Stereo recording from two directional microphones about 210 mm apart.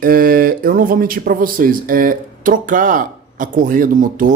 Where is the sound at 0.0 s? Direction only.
45° right (ahead or behind).